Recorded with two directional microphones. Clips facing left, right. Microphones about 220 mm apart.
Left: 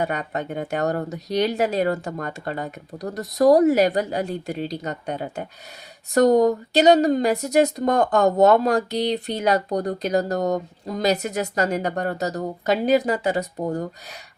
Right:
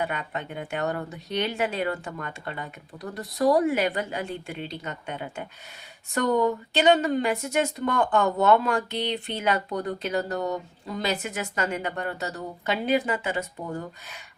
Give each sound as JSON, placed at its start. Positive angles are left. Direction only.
{"t": 0.0, "sound": "speech", "side_deg": 40}